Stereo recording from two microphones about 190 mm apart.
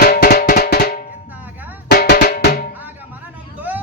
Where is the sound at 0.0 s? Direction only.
55° left (ahead or behind).